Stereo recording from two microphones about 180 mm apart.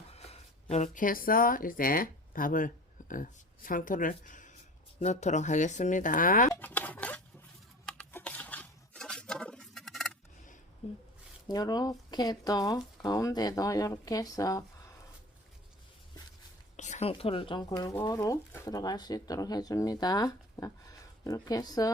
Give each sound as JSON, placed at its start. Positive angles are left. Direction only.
{"t": 0.1, "sound": "speech", "side_deg": 35}
{"t": 6.5, "sound": "a sound", "side_deg": 10}
{"t": 7.9, "sound": "scissors", "side_deg": 5}
{"t": 11.4, "sound": "speech", "side_deg": 20}
{"t": 16.7, "sound": "a woman's voice", "side_deg": 40}